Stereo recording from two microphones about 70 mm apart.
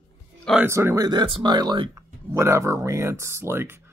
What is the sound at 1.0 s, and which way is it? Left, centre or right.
Speech, right.